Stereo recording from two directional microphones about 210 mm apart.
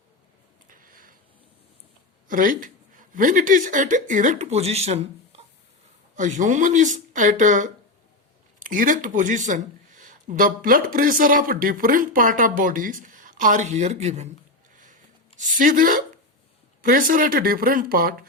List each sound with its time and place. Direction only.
0.7 s a sound: 40° right (ahead or behind)
2.2 s a woman's voice: 40° right (ahead or behind)
6.1 s speech: 35° right (ahead or behind)
15.4 s speech: 40° right (ahead or behind)